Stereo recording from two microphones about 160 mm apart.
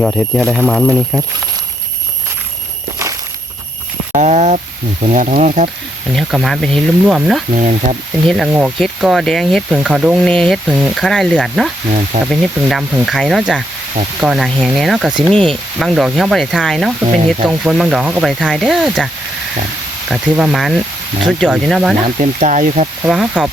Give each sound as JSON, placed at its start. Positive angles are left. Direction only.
{"t": 0.1, "sound": "sizzle", "side_deg": -5}
{"t": 4.1, "sound": "a sound", "side_deg": -50}
{"t": 5.0, "sound": "speech", "side_deg": -50}
{"t": 6.1, "sound": "sizzle", "side_deg": 0}
{"t": 7.5, "sound": "speech", "side_deg": -45}
{"t": 8.3, "sound": "sizzle", "side_deg": -5}
{"t": 10.2, "sound": "sizzle", "side_deg": 5}
{"t": 10.7, "sound": "sizzle", "side_deg": -5}
{"t": 22.2, "sound": "speech", "side_deg": -50}
{"t": 23.0, "sound": "sizzle", "side_deg": -5}